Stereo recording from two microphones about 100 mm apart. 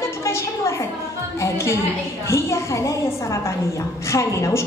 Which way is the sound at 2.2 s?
30° left (ahead or behind).